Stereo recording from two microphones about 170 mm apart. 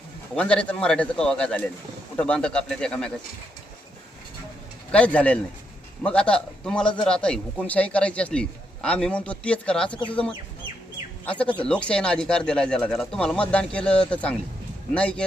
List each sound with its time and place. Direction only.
0.3 s speech: 5° left (ahead or behind)
4.9 s a man's voice: 5° left (ahead or behind)